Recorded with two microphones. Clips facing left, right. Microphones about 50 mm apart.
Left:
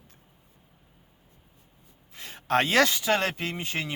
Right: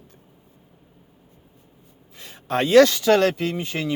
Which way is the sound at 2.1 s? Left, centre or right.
Left.